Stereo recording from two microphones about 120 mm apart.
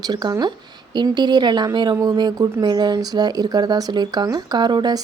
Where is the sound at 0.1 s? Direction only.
35° right (ahead or behind).